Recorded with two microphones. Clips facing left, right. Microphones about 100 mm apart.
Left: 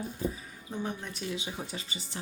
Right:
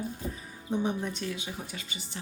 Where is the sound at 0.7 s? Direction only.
15° right (ahead or behind).